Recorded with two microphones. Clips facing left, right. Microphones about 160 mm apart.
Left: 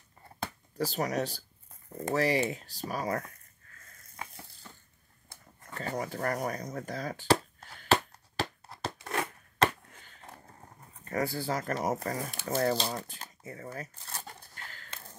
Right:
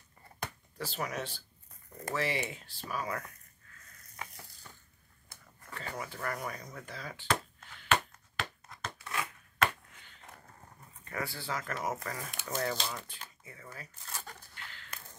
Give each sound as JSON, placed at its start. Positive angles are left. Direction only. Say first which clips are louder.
{"t": 0.7, "sound": "speech", "louder": "left 7 dB", "side_deg": 40}
{"t": 5.8, "sound": "chop", "louder": "left 7 dB", "side_deg": 40}
{"t": 9.6, "sound": "a sound", "louder": "left 4 dB", "side_deg": 40}
{"t": 11.1, "sound": "speech", "louder": "left 7 dB", "side_deg": 40}